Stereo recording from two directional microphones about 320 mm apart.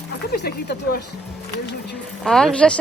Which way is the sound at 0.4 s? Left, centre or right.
Left.